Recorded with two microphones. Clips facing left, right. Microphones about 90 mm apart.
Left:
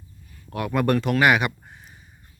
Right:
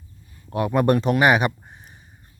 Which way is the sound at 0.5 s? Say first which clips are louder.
Right 3 dB; 25° right (ahead or behind).